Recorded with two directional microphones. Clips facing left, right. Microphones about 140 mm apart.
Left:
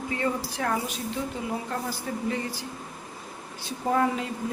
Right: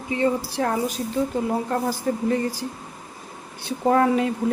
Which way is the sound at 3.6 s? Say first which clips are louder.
Right 6 dB; 65° right (ahead or behind).